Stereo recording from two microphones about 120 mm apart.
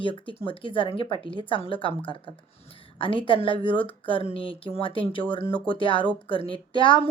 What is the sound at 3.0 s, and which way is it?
Speech, 45° left (ahead or behind).